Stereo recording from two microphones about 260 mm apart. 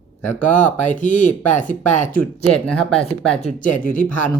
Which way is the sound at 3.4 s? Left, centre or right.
Left.